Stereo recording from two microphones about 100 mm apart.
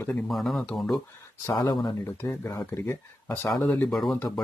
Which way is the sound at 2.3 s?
25° left (ahead or behind).